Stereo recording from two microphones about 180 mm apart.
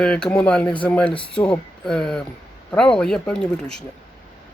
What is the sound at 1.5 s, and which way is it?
Speech, 5° left (ahead or behind).